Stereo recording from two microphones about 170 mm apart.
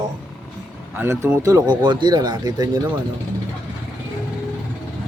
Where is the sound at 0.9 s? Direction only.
15° right (ahead or behind).